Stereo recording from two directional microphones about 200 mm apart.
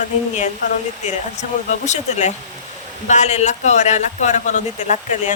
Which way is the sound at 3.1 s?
35° left (ahead or behind).